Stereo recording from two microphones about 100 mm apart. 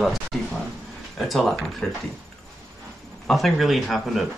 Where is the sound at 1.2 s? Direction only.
Centre (ahead or behind).